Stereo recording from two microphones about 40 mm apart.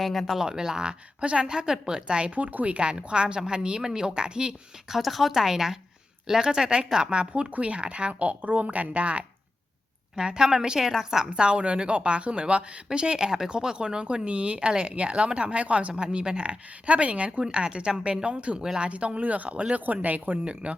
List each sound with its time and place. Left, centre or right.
0.0 s speech: centre
0.3 s speech: centre
1.2 s a woman's voice: right
1.5 s a woman's voice: centre; by 2.7 s right
2.7 s a woman's voice: right
4.9 s a woman's voice: centre; by 9.2 s right
10.2 s a woman's voice: centre
17.4 s a woman's voice: right
20.4 s a woman's voice: right